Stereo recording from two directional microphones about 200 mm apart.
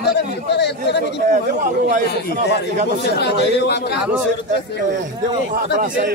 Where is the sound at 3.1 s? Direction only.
55° left (ahead or behind).